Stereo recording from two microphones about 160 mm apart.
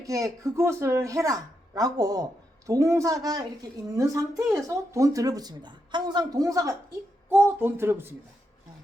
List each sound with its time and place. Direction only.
0.0 s a woman's voice: 20° right (ahead or behind)